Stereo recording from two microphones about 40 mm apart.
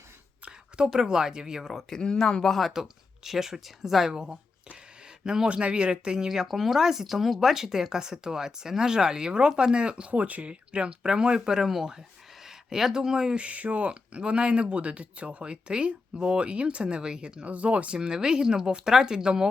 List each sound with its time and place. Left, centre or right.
0.9 s speech: centre
1.9 s speech: centre
2.5 s speech: centre
5.2 s speech: centre
5.5 s speech: right
13.3 s speech: right